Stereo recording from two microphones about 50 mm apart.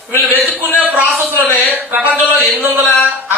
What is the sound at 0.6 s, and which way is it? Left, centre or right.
Speech, left.